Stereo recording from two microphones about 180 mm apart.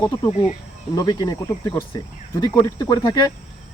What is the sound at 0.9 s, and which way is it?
Speech, 20° left (ahead or behind).